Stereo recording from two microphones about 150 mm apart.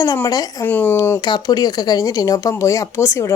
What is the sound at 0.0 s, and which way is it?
Speech, 25° left (ahead or behind).